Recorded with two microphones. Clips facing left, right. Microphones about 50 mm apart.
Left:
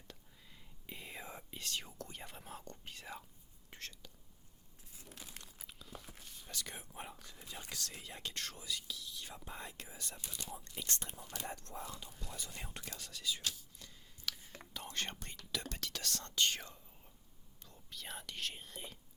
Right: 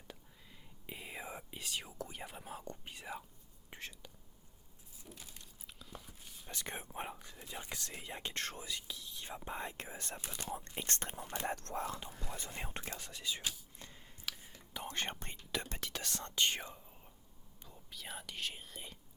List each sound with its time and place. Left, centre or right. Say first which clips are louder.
0.1 s whispering: right 3 dB; centre
5.6 s whispering: right 2 dB; centre
6.5 s speech: right 3 dB; right
11.4 s speech: right 8 dB; right
11.9 s speech: right 5 dB; right
13.7 s a sound: right 3 dB; right
14.3 s whispering: left 1 dB; centre
14.9 s speech: right 1 dB; right; by 18.9 s centre